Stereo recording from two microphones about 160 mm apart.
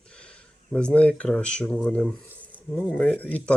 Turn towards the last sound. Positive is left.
turn(degrees=10)  # may be behind; listen again after turning